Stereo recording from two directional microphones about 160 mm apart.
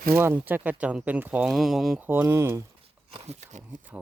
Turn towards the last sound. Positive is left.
turn(degrees=-40)  # may be behind; listen again after turning